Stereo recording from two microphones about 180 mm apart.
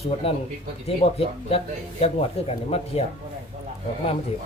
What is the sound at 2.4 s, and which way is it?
Speech, 35° left (ahead or behind).